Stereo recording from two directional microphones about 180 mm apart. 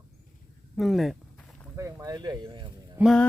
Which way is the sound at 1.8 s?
15° right (ahead or behind).